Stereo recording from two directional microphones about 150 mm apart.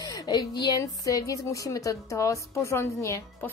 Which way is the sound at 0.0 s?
25° left (ahead or behind).